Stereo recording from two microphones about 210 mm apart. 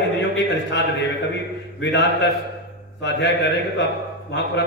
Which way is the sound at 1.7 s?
55° left (ahead or behind).